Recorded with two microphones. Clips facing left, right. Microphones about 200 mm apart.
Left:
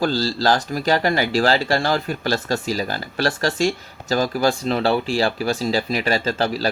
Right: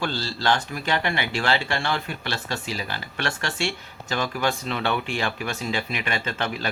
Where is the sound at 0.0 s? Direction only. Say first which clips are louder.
Left 7 dB; 40° left (ahead or behind).